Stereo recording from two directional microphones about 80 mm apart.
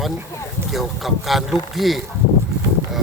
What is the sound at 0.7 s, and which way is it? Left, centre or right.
Speech, centre.